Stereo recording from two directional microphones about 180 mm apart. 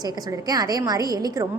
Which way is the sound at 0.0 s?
20° right (ahead or behind).